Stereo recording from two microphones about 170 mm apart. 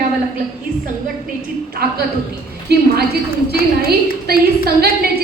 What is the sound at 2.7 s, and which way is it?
A woman's voice, 70° right (ahead or behind).